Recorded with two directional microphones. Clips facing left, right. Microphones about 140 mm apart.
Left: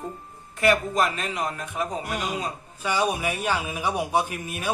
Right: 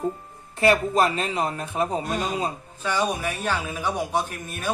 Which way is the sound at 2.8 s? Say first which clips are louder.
Even; 10° left (ahead or behind).